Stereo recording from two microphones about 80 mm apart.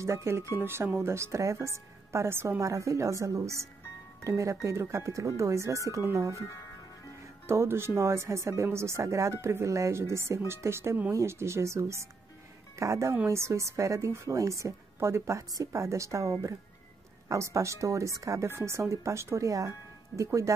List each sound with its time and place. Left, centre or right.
0.0 s a woman's voice: right
6.3 s speech: left
7.4 s a woman's voice: right